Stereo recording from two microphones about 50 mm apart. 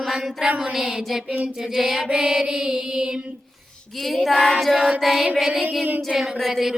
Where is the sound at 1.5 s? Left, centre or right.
Centre.